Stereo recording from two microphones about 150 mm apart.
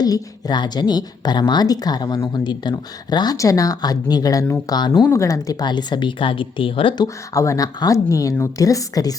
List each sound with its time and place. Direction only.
0.0 s speech: 25° left (ahead or behind)